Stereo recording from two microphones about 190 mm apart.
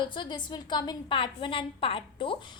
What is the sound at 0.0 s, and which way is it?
A woman's voice, 25° left (ahead or behind).